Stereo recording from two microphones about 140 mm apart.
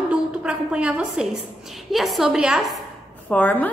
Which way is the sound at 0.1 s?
10° right (ahead or behind).